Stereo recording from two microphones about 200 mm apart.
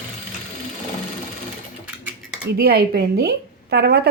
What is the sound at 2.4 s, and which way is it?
Speech, 50° right (ahead or behind).